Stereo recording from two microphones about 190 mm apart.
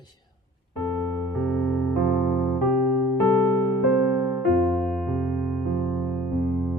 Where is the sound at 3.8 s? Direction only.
5° right (ahead or behind).